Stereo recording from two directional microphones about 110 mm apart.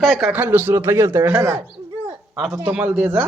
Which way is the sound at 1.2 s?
15° right (ahead or behind).